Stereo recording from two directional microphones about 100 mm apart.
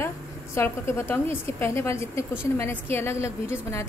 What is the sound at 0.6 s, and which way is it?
A woman's voice, 25° left (ahead or behind).